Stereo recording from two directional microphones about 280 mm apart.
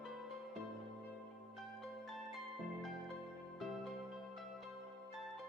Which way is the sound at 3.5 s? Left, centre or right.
Centre.